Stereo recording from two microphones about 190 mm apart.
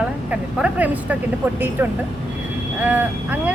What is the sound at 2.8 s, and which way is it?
Speech, 10° right (ahead or behind).